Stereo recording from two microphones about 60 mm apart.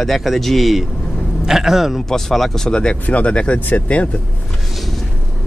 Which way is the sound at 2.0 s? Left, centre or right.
Centre.